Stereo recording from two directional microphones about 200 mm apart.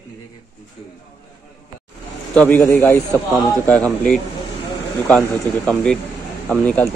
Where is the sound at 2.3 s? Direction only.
10° left (ahead or behind).